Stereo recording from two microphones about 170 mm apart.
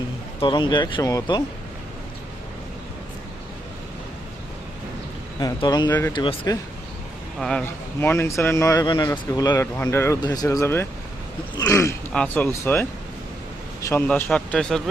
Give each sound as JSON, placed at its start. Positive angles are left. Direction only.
{"t": 0.3, "sound": "speech", "side_deg": 30}
{"t": 5.4, "sound": "speech", "side_deg": 25}
{"t": 7.3, "sound": "speech", "side_deg": 0}
{"t": 8.0, "sound": "speech", "side_deg": 15}